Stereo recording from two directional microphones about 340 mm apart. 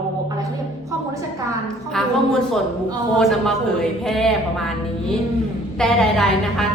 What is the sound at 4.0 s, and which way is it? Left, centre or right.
Speech, centre.